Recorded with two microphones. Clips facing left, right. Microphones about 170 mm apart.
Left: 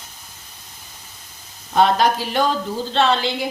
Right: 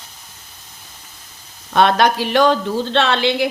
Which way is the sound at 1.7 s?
75° right (ahead or behind).